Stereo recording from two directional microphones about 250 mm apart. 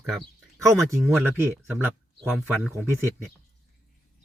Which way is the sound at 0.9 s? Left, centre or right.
Centre.